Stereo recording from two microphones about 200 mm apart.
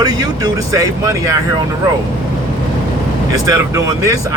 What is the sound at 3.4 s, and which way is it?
Speech, 15° right (ahead or behind).